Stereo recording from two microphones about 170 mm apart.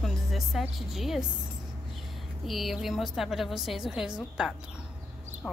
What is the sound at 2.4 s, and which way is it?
Speech, centre (ahead or behind).